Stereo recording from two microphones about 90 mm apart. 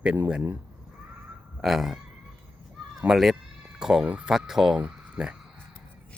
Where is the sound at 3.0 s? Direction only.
5° right (ahead or behind).